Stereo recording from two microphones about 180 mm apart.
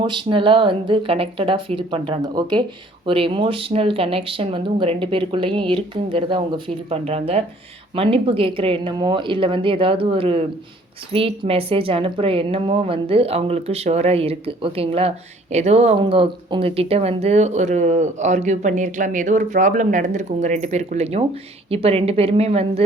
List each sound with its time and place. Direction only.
0.0 s a woman's voice: 25° right (ahead or behind)